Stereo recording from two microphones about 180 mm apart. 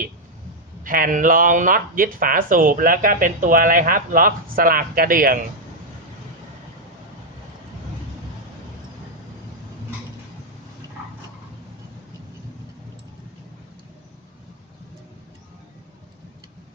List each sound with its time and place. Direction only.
0.9 s speech: 50° right (ahead or behind)